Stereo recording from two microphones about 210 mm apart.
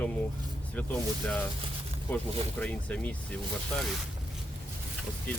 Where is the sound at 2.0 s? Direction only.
5° left (ahead or behind).